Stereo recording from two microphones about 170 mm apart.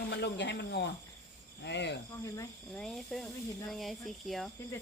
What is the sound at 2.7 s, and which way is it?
Speech, 5° left (ahead or behind).